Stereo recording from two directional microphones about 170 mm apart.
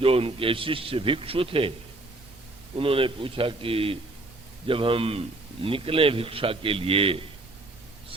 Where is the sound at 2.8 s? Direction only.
30° right (ahead or behind).